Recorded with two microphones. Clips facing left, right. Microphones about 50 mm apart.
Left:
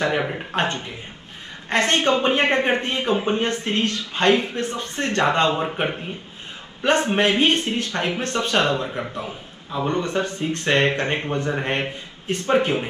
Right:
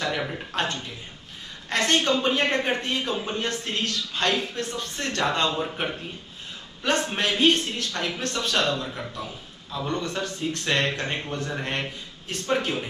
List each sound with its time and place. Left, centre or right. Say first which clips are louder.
0.0 s speech: left 6 dB; left